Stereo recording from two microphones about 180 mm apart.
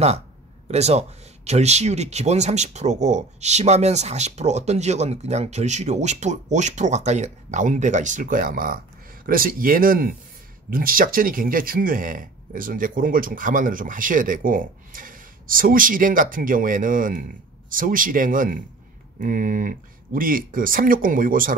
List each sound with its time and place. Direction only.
0.7 s speech: 35° right (ahead or behind)